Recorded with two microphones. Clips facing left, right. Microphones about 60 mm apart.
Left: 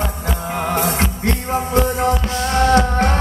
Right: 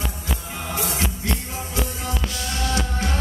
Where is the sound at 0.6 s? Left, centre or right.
Left.